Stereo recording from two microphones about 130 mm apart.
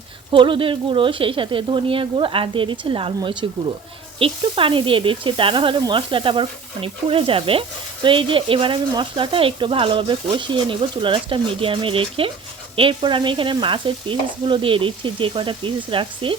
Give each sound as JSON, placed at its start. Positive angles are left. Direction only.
{"t": 0.3, "sound": "speech", "side_deg": -40}